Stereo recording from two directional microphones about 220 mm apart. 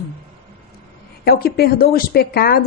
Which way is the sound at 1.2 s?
45° left (ahead or behind).